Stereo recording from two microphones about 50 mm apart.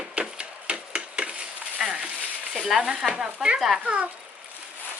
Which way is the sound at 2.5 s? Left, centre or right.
Centre.